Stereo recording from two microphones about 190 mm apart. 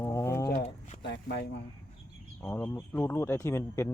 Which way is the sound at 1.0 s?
65° left (ahead or behind).